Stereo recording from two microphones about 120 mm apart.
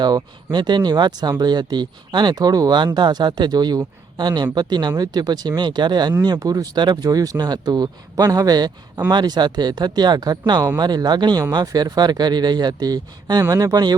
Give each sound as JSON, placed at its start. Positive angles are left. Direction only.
{"t": 0.0, "sound": "speech", "side_deg": -35}